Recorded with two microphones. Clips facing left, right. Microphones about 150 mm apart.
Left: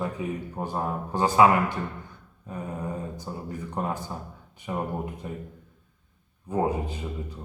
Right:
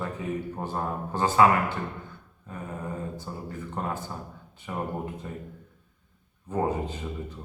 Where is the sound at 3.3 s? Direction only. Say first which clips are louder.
Left 2 dB; 15° left (ahead or behind).